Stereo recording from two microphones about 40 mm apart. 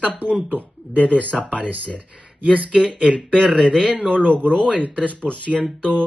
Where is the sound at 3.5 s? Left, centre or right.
Left.